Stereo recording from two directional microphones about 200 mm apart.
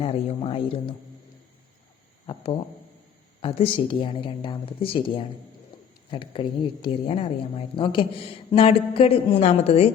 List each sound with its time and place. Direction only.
0.0 s speech: 30° left (ahead or behind)
2.2 s speech: 25° left (ahead or behind)